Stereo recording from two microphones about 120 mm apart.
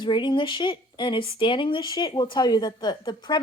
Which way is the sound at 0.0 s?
40° left (ahead or behind).